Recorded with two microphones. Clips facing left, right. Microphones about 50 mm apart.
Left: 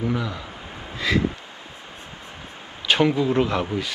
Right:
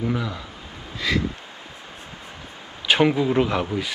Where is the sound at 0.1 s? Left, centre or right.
Centre.